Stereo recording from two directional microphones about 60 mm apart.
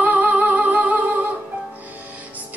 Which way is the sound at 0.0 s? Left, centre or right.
Right.